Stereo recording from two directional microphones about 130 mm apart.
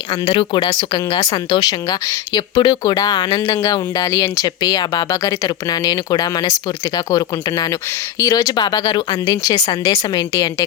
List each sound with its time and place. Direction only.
0.1 s speech: 35° left (ahead or behind)